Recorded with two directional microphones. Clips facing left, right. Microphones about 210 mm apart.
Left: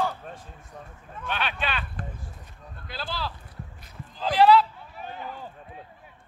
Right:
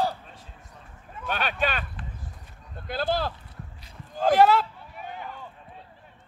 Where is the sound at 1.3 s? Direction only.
45° right (ahead or behind).